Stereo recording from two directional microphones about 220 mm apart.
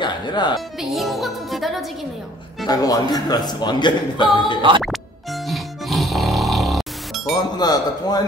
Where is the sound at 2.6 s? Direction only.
15° left (ahead or behind).